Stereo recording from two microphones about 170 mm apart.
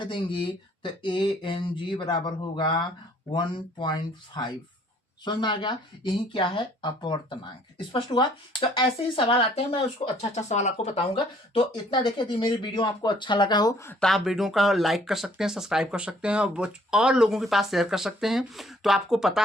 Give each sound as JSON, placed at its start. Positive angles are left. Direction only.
{"t": 0.0, "sound": "speech", "side_deg": 30}
{"t": 14.0, "sound": "speech", "side_deg": 0}